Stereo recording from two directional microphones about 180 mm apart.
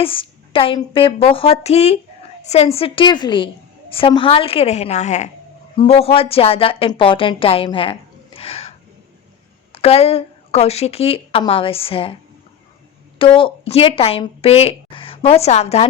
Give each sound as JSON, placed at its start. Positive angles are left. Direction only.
{"t": 0.0, "sound": "a woman's voice", "side_deg": 30}
{"t": 9.7, "sound": "speech", "side_deg": 35}
{"t": 13.1, "sound": "speech", "side_deg": 30}